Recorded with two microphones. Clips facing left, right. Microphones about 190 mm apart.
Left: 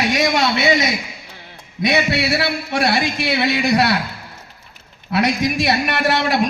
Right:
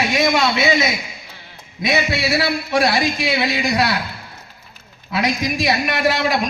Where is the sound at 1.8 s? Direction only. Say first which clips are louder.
Left 2 dB; 60° left (ahead or behind).